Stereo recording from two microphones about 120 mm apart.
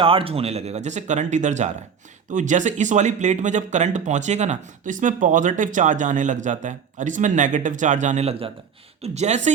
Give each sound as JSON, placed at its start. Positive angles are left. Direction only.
{"t": 0.0, "sound": "speech", "side_deg": -50}
{"t": 2.3, "sound": "speech", "side_deg": -90}
{"t": 9.0, "sound": "speech", "side_deg": -70}